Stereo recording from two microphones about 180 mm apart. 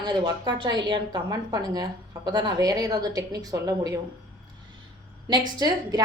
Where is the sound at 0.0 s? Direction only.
25° right (ahead or behind).